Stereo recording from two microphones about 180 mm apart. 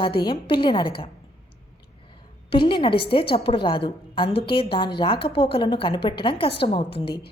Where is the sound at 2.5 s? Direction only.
25° left (ahead or behind).